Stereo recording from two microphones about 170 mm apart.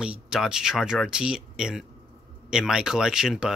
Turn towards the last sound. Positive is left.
turn(degrees=-5)  # may be behind; listen again after turning